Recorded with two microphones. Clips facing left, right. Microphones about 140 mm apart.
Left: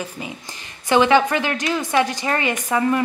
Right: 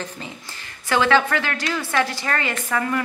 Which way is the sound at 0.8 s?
20° left (ahead or behind).